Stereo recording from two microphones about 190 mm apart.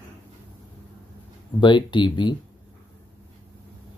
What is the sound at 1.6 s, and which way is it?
Speech, 25° left (ahead or behind).